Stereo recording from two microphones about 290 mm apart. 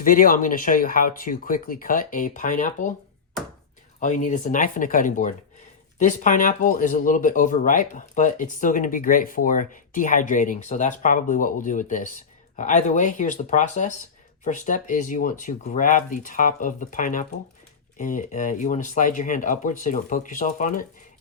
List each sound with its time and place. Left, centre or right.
0.0 s speech: left
4.0 s speech: left